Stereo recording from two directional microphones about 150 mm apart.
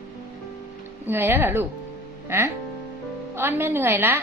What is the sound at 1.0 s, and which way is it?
A woman's voice, 15° right (ahead or behind).